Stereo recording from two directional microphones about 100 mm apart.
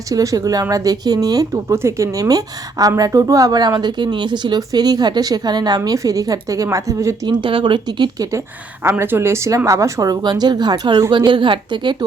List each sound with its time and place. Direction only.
0.1 s a woman's voice: 35° right (ahead or behind)
1.7 s a woman's voice: 30° right (ahead or behind)
7.3 s a woman's voice: 55° right (ahead or behind)
8.8 s a woman's voice: 20° right (ahead or behind); by 12.0 s 50° right (ahead or behind)